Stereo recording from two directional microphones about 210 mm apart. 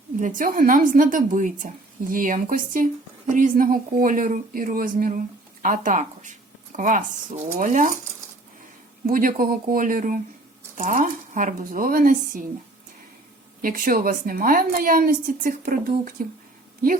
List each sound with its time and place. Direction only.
0.2 s speech: 40° right (ahead or behind)
9.0 s speech: 40° right (ahead or behind)
13.6 s speech: 40° right (ahead or behind)